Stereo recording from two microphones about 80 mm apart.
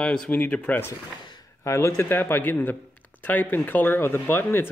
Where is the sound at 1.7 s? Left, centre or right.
Left.